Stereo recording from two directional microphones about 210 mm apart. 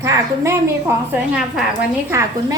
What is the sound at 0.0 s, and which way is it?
A woman's voice, 15° right (ahead or behind).